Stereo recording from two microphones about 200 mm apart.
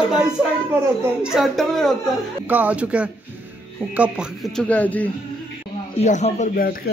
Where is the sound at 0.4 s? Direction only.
5° right (ahead or behind).